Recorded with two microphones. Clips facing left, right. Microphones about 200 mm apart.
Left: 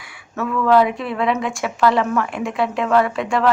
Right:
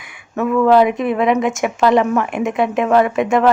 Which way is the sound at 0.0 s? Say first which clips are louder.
Right 5 dB; 20° right (ahead or behind).